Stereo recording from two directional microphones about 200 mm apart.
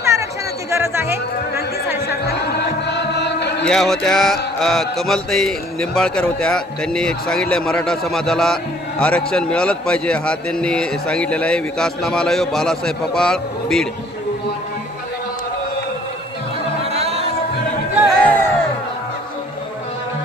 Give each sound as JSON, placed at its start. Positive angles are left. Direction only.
{"t": 0.0, "sound": "a sound", "side_deg": -15}
{"t": 0.7, "sound": "music", "side_deg": -10}
{"t": 3.6, "sound": "mantra", "side_deg": 5}
{"t": 16.9, "sound": "music", "side_deg": -30}
{"t": 18.2, "sound": "crowd", "side_deg": 10}